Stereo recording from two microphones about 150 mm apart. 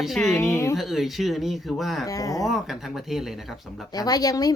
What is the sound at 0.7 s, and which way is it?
Speech, centre (ahead or behind).